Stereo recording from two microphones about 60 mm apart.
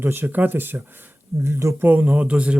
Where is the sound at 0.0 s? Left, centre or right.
Right.